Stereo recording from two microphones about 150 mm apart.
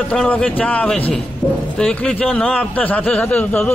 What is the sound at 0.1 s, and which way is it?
A man's voice, 5° left (ahead or behind).